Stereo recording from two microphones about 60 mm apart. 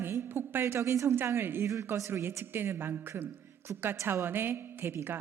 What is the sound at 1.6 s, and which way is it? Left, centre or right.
Speech, right.